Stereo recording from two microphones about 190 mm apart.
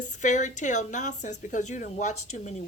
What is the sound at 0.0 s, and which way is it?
A woman's voice, 40° left (ahead or behind).